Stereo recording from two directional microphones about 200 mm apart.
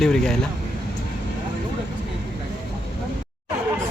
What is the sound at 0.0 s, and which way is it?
Speech, centre (ahead or behind).